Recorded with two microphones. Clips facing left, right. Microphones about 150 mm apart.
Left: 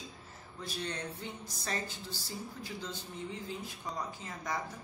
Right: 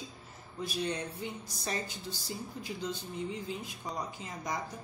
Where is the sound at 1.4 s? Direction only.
15° right (ahead or behind).